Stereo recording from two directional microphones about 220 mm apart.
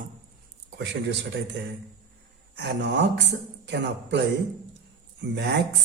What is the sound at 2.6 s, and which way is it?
Speech, 50° right (ahead or behind).